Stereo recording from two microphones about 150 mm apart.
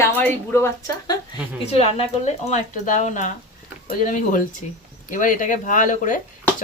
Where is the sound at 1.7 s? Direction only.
45° left (ahead or behind); by 6.2 s 60° left (ahead or behind).